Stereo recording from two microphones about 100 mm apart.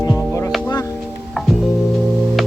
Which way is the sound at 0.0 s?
35° left (ahead or behind).